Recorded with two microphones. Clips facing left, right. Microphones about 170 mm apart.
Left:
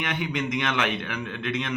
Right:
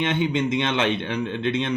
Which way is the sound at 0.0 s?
25° right (ahead or behind).